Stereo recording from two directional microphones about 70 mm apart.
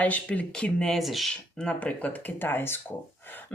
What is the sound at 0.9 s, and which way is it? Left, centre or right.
Speech, centre.